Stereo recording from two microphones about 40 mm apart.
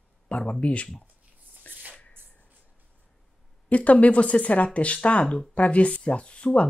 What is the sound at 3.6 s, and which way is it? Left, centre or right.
Speech, left.